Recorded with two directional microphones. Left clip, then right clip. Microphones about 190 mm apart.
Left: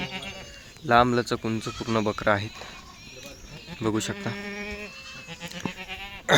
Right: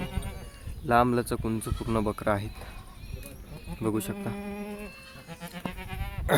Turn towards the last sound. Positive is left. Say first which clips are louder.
# left 5 dB
turn(degrees=5)  # may be behind; listen again after turning